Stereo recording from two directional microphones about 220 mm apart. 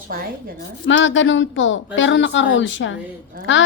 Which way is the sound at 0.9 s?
60° left (ahead or behind).